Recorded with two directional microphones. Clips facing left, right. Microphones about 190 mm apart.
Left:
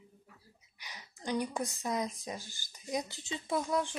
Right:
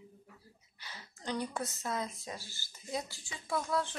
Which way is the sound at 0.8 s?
15° left (ahead or behind).